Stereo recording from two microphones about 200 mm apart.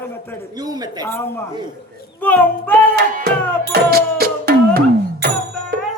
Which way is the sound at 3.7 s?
50° right (ahead or behind).